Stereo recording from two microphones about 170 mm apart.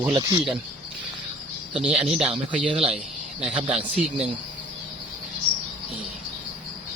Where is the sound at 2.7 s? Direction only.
35° right (ahead or behind).